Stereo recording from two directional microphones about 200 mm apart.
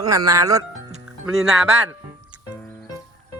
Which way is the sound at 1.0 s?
5° right (ahead or behind).